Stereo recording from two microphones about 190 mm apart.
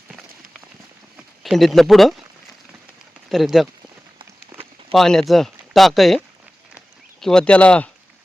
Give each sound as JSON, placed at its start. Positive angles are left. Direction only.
{"t": 1.1, "sound": "speech", "side_deg": 0}
{"t": 3.2, "sound": "speech", "side_deg": 0}
{"t": 4.9, "sound": "speech", "side_deg": 5}
{"t": 6.7, "sound": "a sound", "side_deg": 0}